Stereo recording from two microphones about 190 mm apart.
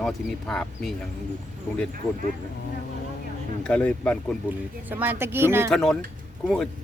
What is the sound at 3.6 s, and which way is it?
Speech, 5° left (ahead or behind).